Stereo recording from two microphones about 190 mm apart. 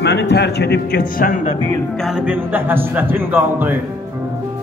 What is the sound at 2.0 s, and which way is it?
A man's voice, 5° right (ahead or behind).